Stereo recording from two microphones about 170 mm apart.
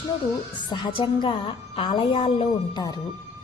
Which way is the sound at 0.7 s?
30° left (ahead or behind).